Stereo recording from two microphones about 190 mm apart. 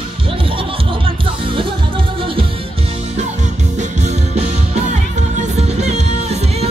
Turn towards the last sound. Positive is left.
turn(degrees=-35)  # may be behind; listen again after turning